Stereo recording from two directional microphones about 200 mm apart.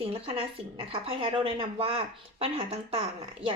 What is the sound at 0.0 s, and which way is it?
A woman's voice, 30° right (ahead or behind).